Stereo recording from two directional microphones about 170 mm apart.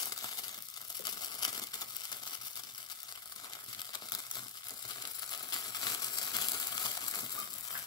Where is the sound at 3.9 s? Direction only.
25° left (ahead or behind).